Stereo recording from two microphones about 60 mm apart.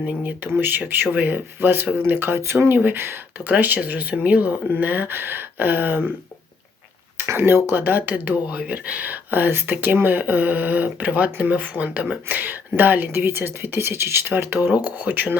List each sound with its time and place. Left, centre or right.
0.2 s speech: right
7.3 s speech: right